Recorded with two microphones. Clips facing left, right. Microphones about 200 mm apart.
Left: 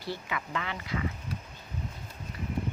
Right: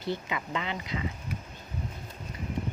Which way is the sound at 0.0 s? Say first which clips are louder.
Right 3 dB; 20° right (ahead or behind).